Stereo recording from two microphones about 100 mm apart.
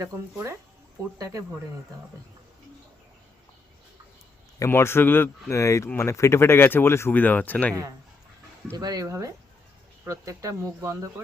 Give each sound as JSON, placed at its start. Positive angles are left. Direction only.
{"t": 0.0, "sound": "speech", "side_deg": -35}
{"t": 4.6, "sound": "speech", "side_deg": 25}
{"t": 8.7, "sound": "speech", "side_deg": -40}